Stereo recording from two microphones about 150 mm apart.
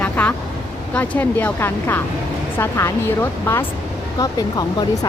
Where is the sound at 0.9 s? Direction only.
10° left (ahead or behind).